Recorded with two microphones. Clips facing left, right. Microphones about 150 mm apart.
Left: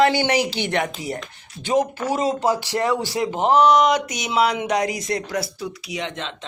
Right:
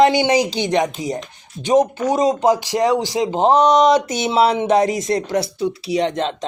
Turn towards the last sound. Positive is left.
turn(degrees=-40)  # may be behind; listen again after turning